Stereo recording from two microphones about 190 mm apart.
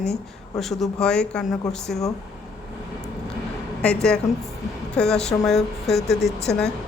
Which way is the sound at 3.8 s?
5° left (ahead or behind).